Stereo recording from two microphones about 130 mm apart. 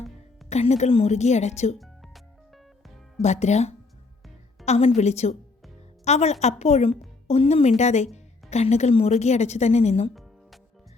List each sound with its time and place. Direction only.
0.5 s a woman's voice: 60° left (ahead or behind)
3.2 s a woman's voice: 60° left (ahead or behind)